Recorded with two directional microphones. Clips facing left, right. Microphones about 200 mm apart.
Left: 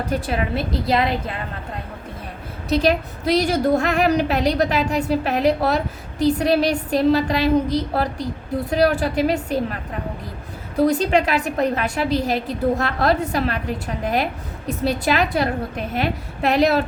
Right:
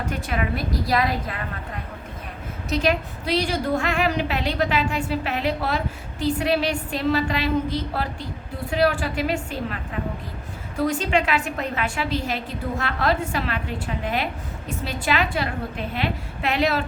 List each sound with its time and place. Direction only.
0.1 s a woman's voice: 30° left (ahead or behind)
2.6 s a woman's voice: 35° left (ahead or behind)
10.8 s a woman's voice: 35° left (ahead or behind)